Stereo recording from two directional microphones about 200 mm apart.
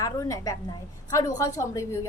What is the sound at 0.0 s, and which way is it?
A woman's voice, 15° left (ahead or behind).